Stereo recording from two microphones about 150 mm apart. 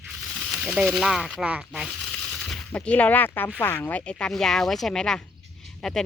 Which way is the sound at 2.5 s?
10° left (ahead or behind).